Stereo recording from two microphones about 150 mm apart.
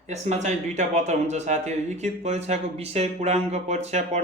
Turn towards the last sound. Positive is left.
turn(degrees=-50)  # may be behind; listen again after turning